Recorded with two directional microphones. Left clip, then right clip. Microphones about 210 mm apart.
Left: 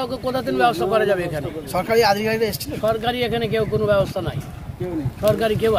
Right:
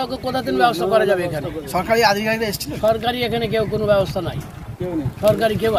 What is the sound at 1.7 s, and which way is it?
Speech, 35° left (ahead or behind).